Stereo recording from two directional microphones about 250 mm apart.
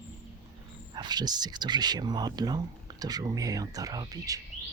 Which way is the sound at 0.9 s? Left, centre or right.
Centre.